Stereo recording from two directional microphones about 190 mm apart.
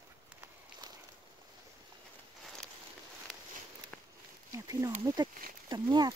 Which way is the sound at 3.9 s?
5° left (ahead or behind).